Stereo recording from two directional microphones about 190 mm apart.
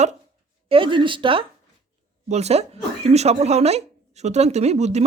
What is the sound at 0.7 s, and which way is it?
Speech, 25° right (ahead or behind).